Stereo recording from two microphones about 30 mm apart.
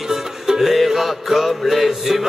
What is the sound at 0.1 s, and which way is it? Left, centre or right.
Music, centre.